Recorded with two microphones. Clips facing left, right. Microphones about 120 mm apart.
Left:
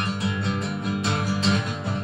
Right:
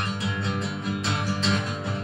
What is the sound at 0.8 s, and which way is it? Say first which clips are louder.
Music: left 2 dB; 20° left (ahead or behind).